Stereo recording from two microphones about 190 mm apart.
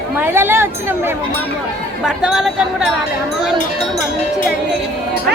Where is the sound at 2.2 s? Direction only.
5° right (ahead or behind).